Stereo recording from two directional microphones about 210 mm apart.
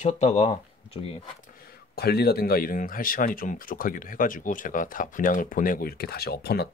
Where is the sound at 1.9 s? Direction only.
50° left (ahead or behind).